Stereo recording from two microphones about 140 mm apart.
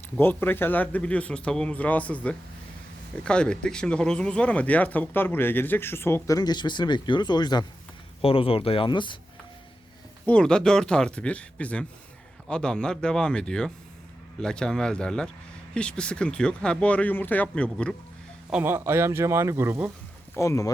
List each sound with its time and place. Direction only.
0.2 s speech: 15° left (ahead or behind); by 7.6 s 30° left (ahead or behind)
8.2 s speech: 40° left (ahead or behind)
10.2 s speech: 5° left (ahead or behind)
18.5 s speech: 15° right (ahead or behind)
20.3 s speech: 20° left (ahead or behind)